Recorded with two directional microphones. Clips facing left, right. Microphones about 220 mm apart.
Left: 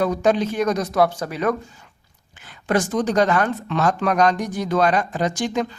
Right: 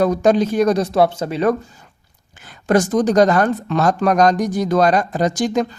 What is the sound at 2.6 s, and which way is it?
Speech, 40° right (ahead or behind).